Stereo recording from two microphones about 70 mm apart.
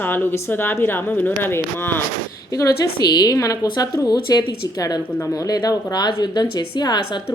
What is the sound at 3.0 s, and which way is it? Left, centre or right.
Speech, left.